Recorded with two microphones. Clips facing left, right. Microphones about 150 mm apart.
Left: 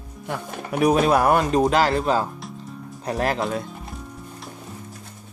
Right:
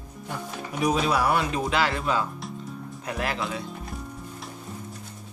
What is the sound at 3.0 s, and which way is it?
Speech, 40° left (ahead or behind).